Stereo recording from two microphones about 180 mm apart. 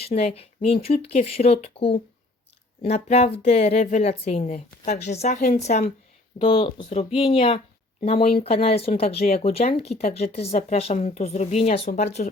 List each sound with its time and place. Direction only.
0.0 s a woman's voice: 35° left (ahead or behind)
6.4 s a woman's voice: 30° left (ahead or behind)